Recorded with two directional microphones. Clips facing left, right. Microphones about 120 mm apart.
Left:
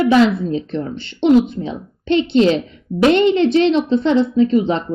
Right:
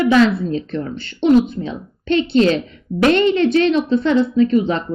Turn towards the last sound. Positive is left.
turn(degrees=20)  # may be behind; listen again after turning